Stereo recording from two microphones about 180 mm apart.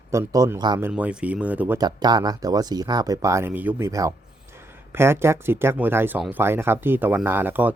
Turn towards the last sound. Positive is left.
turn(degrees=-10)  # may be behind; listen again after turning